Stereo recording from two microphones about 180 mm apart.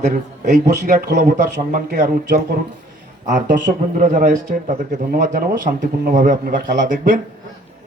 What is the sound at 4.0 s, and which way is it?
A man's voice, 45° right (ahead or behind).